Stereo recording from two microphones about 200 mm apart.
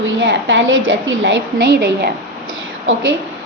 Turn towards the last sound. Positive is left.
turn(degrees=-75)  # may be behind; listen again after turning